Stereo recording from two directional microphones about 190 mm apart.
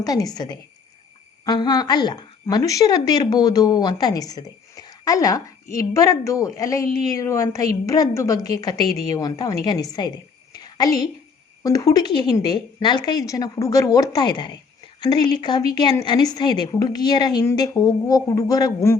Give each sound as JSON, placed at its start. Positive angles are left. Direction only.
{"t": 0.0, "sound": "a woman's voice", "side_deg": 20}
{"t": 10.5, "sound": "a sound", "side_deg": 20}
{"t": 11.6, "sound": "a woman's voice", "side_deg": 20}